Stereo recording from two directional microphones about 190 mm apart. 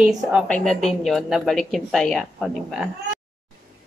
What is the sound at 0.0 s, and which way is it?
Speech, 5° right (ahead or behind).